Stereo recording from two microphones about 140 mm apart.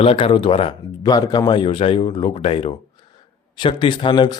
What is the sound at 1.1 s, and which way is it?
Speech, 25° left (ahead or behind).